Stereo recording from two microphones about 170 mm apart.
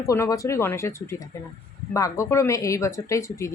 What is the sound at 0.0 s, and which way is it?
Speech, 20° left (ahead or behind).